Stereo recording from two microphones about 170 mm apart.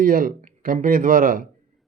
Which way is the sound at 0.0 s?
55° right (ahead or behind).